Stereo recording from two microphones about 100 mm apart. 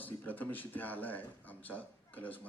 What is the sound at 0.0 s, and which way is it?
A man's voice, 15° left (ahead or behind).